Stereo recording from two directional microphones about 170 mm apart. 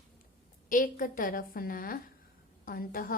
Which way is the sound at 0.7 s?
50° left (ahead or behind).